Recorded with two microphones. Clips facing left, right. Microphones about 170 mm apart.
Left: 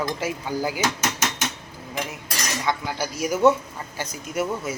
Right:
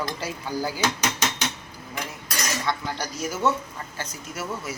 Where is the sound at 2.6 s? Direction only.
10° left (ahead or behind).